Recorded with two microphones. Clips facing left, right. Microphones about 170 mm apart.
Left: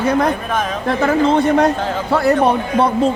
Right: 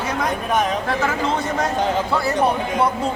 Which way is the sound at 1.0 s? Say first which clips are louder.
Left 8 dB; 60° left (ahead or behind).